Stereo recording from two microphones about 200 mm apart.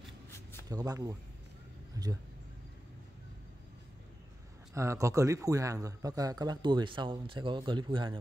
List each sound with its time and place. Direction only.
0.3 s shuffling cards: 10° left (ahead or behind)
0.7 s a man's voice: 20° right (ahead or behind)
4.7 s a man's voice: 15° right (ahead or behind)